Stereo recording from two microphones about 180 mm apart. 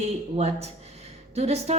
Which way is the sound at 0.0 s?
35° right (ahead or behind).